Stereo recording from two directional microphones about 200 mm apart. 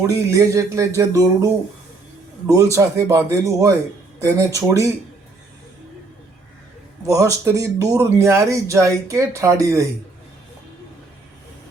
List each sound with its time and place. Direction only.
0.3 s speech: 15° right (ahead or behind)
2.7 s speech: 15° right (ahead or behind)
7.1 s speech: 15° right (ahead or behind)